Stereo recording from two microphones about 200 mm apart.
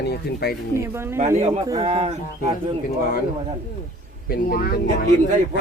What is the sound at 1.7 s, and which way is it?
Speech, 30° right (ahead or behind).